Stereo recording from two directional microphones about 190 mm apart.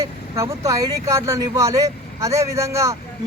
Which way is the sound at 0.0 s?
15° right (ahead or behind).